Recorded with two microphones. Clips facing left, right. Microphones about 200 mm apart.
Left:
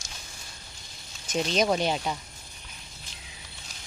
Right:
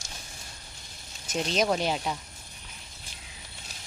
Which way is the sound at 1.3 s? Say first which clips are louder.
Left 2 dB; centre (ahead or behind).